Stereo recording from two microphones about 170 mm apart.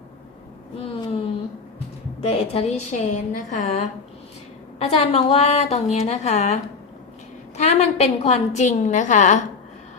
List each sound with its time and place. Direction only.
2.2 s a woman's voice: 35° left (ahead or behind)